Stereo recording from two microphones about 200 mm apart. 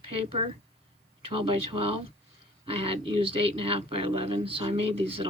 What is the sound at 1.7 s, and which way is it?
A woman's voice, 25° right (ahead or behind).